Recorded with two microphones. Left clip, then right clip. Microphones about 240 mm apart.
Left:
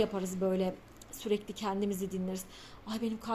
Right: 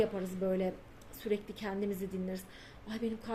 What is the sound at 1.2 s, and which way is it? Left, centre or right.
Speech, left.